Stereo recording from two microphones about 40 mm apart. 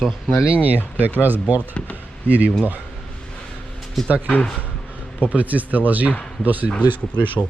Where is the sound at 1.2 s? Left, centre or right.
Right.